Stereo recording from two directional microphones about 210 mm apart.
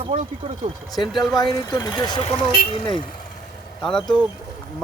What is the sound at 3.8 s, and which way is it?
Speech, 5° left (ahead or behind).